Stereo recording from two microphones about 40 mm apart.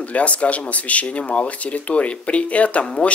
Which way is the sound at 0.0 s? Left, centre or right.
Left.